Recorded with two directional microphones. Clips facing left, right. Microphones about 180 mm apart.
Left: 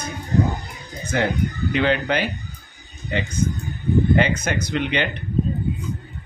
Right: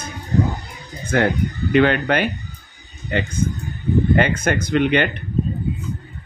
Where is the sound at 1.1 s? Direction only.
55° right (ahead or behind).